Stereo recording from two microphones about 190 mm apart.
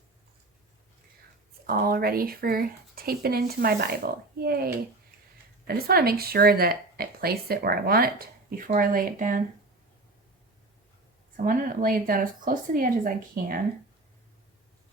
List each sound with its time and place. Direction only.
1.6 s speech: 50° right (ahead or behind)
11.3 s speech: 45° right (ahead or behind)